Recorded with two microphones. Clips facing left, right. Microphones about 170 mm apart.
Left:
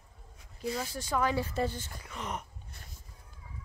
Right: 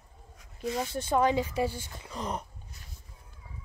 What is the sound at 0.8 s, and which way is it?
Speech, 25° right (ahead or behind).